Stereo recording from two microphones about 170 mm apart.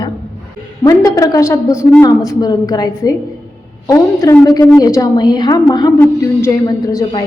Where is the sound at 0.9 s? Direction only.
20° left (ahead or behind).